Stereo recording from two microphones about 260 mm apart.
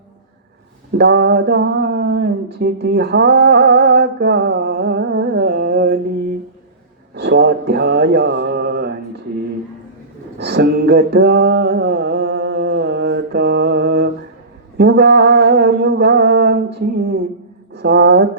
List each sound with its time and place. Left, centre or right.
0.9 s mantra: right
7.1 s male singing: right
10.3 s mantra: right